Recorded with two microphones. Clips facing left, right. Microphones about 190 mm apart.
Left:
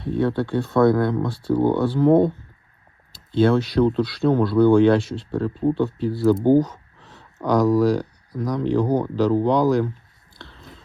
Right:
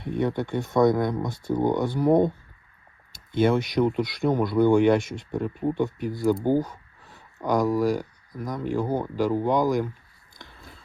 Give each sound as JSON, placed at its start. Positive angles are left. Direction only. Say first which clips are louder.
{"t": 0.0, "sound": "speech", "louder": "left 4 dB", "side_deg": -15}
{"t": 3.3, "sound": "speech", "louder": "left 4 dB", "side_deg": -15}
{"t": 6.3, "sound": "speech", "louder": "left 8 dB", "side_deg": 15}
{"t": 6.6, "sound": "a sound", "louder": "left 7 dB", "side_deg": -10}
{"t": 7.4, "sound": "speech", "louder": "left 5 dB", "side_deg": -10}
{"t": 10.3, "sound": "a sound", "louder": "left 4 dB", "side_deg": -15}